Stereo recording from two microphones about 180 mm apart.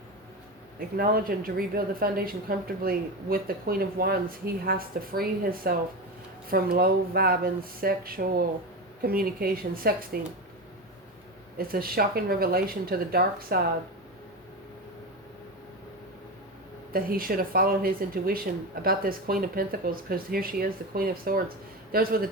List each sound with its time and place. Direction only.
0.8 s speech: 55° right (ahead or behind)
11.5 s speech: 55° right (ahead or behind)
16.9 s speech: 55° right (ahead or behind)